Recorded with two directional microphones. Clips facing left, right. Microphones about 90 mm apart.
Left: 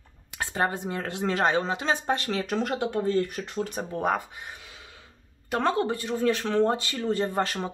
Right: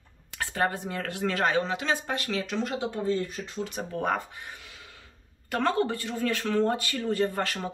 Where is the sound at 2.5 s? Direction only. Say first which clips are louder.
Left 3 dB; 60° left (ahead or behind).